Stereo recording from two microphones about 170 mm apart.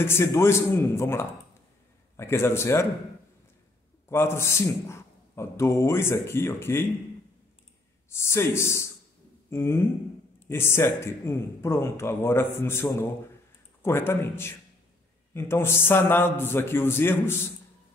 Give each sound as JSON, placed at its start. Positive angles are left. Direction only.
{"t": 0.0, "sound": "a man's voice", "side_deg": 15}
{"t": 4.1, "sound": "a man's voice", "side_deg": 15}
{"t": 8.1, "sound": "a man's voice", "side_deg": 15}